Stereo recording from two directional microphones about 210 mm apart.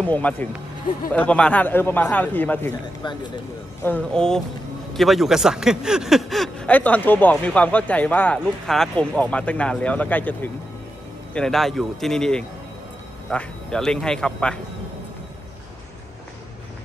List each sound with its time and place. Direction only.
0.0 s a man's voice: 5° left (ahead or behind)
3.8 s speech: 5° left (ahead or behind)